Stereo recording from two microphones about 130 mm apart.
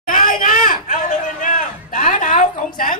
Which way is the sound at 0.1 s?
90° left.